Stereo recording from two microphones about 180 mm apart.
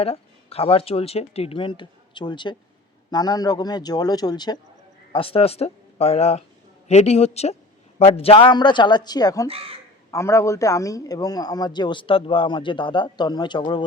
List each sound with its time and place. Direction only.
0.0 s a man's voice: 35° left (ahead or behind)
9.5 s speech: 30° right (ahead or behind)
10.1 s a man's voice: 15° left (ahead or behind)